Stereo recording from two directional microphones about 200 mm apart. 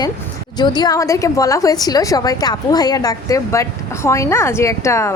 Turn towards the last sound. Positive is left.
turn(degrees=15)  # may be behind; listen again after turning